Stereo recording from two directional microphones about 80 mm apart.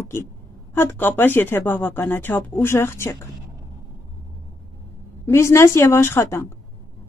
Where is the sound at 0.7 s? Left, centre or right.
Left.